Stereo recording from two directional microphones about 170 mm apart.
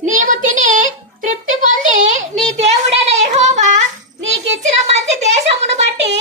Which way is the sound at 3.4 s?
45° right (ahead or behind).